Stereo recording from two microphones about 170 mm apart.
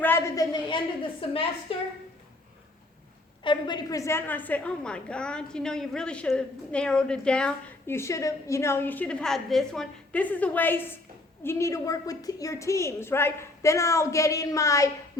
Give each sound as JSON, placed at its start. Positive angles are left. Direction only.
{"t": 0.0, "sound": "a sound", "side_deg": 10}
{"t": 0.5, "sound": "a woman's voice", "side_deg": 30}
{"t": 3.4, "sound": "a woman's voice", "side_deg": 25}